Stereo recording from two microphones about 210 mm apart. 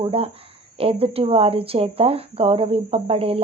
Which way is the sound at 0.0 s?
25° right (ahead or behind).